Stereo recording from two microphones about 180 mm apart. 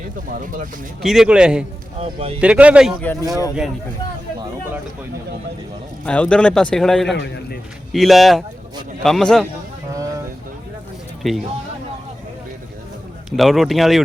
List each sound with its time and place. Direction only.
0.3 s speech: 50° right (ahead or behind)
1.0 s a man's voice: centre (ahead or behind)
2.0 s speech: 35° right (ahead or behind)
2.4 s a man's voice: 5° right (ahead or behind)
3.2 s speech: 20° right (ahead or behind)
6.1 s a man's voice: 5° left (ahead or behind)
11.2 s speech: centre (ahead or behind)
13.3 s a man's voice: centre (ahead or behind)